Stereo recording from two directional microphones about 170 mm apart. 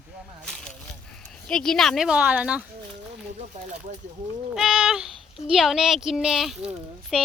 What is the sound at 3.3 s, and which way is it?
Speech, 40° right (ahead or behind).